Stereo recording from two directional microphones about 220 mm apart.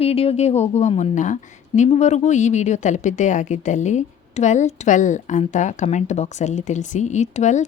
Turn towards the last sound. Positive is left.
turn(degrees=30)  # may be behind; listen again after turning